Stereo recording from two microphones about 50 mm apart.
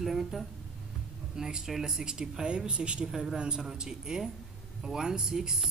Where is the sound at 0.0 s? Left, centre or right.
Centre.